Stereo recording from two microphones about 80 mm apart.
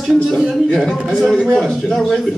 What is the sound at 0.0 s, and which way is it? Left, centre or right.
Speech, centre.